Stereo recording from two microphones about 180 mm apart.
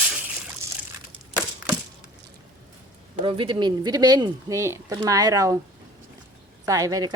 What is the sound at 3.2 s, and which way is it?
Speech, 30° right (ahead or behind).